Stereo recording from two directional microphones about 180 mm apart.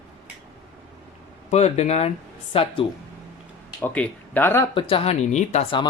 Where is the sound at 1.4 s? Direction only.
35° left (ahead or behind).